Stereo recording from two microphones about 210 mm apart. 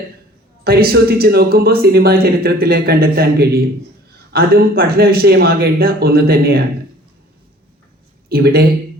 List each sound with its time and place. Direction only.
0.6 s speech: 45° right (ahead or behind)
8.3 s speech: 50° right (ahead or behind)